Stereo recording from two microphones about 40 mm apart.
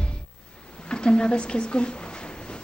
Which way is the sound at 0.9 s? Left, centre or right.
Left.